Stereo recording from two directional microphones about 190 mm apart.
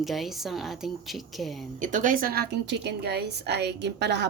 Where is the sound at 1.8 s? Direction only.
40° right (ahead or behind).